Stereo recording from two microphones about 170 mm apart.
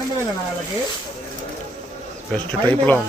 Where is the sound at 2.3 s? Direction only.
10° left (ahead or behind).